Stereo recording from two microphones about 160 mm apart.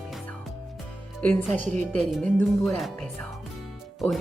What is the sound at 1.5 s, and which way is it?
Speech, 50° right (ahead or behind).